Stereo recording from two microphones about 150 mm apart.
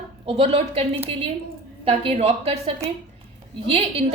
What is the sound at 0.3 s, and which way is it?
A woman's voice, 40° right (ahead or behind).